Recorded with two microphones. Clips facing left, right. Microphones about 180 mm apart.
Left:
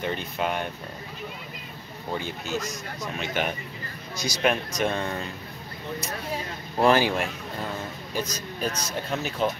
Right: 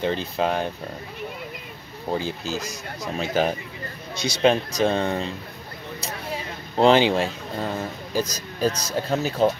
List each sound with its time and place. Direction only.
0.0 s speech: 30° right (ahead or behind)
2.1 s a man's voice: 30° right (ahead or behind)
6.8 s a man's voice: 20° right (ahead or behind)
8.1 s speech: 35° right (ahead or behind)